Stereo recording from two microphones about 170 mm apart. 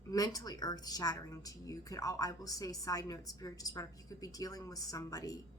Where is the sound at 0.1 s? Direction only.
20° left (ahead or behind).